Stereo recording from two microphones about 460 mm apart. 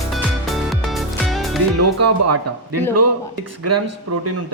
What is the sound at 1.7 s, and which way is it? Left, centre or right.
Speech, right.